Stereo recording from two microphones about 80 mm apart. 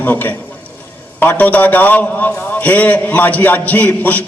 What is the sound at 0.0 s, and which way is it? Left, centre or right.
A man's voice, left.